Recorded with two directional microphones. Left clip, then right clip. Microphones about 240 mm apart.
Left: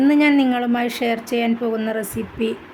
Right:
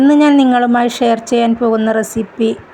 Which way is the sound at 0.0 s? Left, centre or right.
Centre.